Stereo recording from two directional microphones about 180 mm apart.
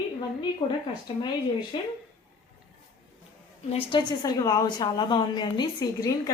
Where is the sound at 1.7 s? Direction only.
25° left (ahead or behind).